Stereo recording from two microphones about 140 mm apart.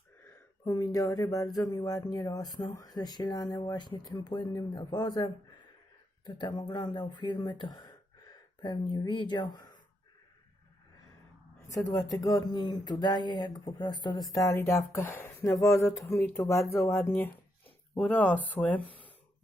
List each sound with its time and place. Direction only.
0.6 s speech: 25° left (ahead or behind)
11.7 s speech: 25° left (ahead or behind)